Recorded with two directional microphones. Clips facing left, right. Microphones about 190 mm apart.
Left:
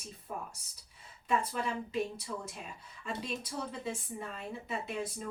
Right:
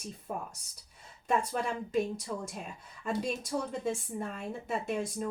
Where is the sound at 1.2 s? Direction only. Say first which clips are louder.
Right 2 dB; 45° right (ahead or behind).